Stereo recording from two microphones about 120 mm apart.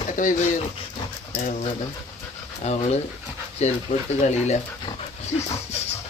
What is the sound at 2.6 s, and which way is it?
Speech, 65° left (ahead or behind).